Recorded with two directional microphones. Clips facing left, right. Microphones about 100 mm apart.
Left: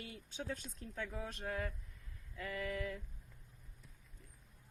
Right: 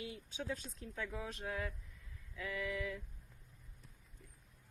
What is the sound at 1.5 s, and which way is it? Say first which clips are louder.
Male singing: left 2 dB; 45° left (ahead or behind).